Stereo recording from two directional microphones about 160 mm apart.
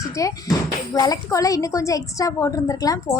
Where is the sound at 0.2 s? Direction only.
20° left (ahead or behind).